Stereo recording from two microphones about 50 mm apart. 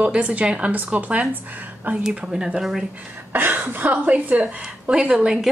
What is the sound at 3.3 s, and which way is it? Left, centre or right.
A woman's voice, right.